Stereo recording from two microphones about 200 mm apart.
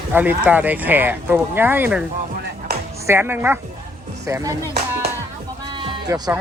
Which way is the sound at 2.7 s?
55° right (ahead or behind).